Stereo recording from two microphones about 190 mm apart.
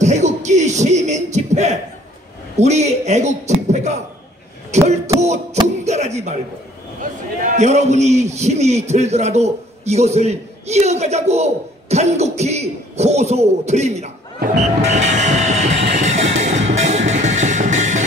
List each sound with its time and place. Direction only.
0.0 s a sound: 40° right (ahead or behind)
2.5 s a man's voice: 35° right (ahead or behind)
15.9 s music: 35° right (ahead or behind)